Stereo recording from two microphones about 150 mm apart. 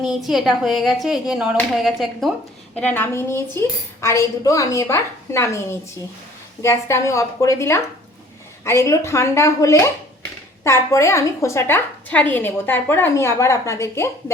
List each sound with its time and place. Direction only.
0.0 s speech: centre (ahead or behind)
2.7 s a woman's voice: 10° left (ahead or behind)